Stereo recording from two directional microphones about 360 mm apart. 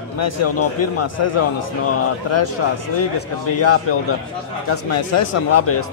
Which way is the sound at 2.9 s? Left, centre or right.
Left.